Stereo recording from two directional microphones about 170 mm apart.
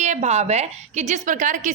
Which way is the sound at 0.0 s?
45° right (ahead or behind).